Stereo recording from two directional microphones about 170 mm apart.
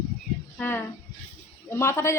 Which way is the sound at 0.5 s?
10° left (ahead or behind).